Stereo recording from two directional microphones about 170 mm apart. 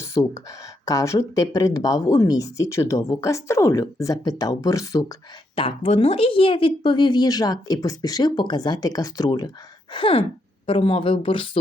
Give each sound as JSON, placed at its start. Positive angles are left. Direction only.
{"t": 0.0, "sound": "speech", "side_deg": 20}
{"t": 5.5, "sound": "speech", "side_deg": 30}